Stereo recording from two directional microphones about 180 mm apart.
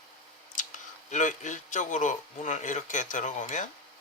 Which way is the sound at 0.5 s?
45° left (ahead or behind).